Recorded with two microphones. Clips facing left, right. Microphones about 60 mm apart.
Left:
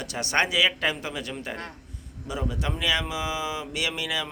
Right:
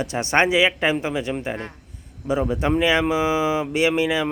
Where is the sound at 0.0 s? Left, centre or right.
Right.